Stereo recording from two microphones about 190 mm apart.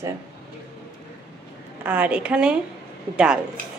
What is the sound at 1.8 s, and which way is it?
A woman's voice, 10° right (ahead or behind).